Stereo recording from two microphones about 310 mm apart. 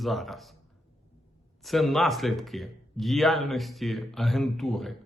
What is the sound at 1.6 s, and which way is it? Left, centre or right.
Speech, centre.